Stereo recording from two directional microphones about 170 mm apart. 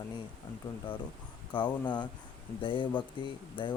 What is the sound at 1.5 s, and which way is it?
Speech, 25° left (ahead or behind).